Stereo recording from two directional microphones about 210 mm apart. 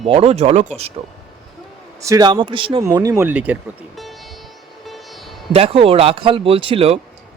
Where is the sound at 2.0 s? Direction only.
20° right (ahead or behind).